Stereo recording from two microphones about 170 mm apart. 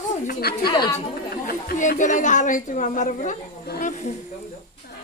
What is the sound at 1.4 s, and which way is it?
A woman's voice, 55° left (ahead or behind).